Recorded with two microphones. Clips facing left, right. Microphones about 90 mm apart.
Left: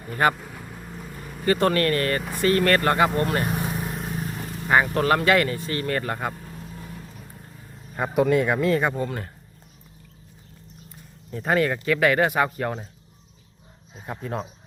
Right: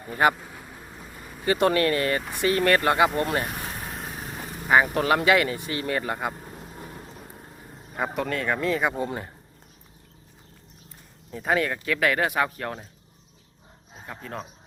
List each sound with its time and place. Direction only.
0.0 s a sound: 10° right (ahead or behind)
1.5 s speech: 15° right (ahead or behind)
3.4 s speech: 15° left (ahead or behind); by 6.3 s 10° right (ahead or behind)
6.3 s vehicle: 20° right (ahead or behind)
7.9 s speech: centre (ahead or behind)
8.2 s speech: 10° left (ahead or behind)
9.0 s speech: 15° right (ahead or behind)
11.3 s speech: centre (ahead or behind)
14.2 s speech: 5° left (ahead or behind)